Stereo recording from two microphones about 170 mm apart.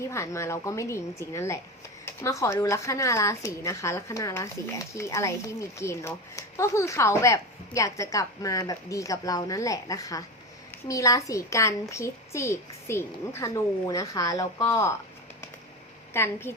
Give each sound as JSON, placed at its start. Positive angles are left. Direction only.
{"t": 0.0, "sound": "a child's voice", "side_deg": 15}
{"t": 16.1, "sound": "speech", "side_deg": 15}